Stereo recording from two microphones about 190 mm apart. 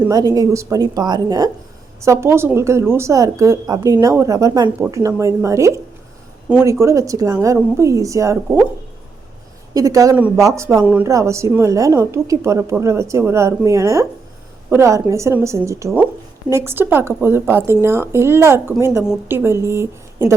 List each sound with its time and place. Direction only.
0.0 s a woman's voice: 20° right (ahead or behind)
9.7 s a woman's voice: 20° right (ahead or behind)